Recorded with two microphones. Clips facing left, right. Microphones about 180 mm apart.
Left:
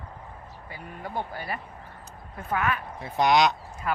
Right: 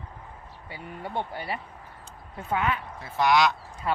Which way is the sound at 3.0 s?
20° left (ahead or behind).